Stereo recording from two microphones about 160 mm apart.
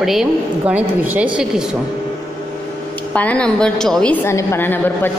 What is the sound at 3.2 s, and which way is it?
A woman's voice, 5° left (ahead or behind).